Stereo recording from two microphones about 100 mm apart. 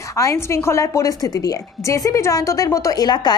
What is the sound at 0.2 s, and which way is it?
A woman's voice, 30° left (ahead or behind).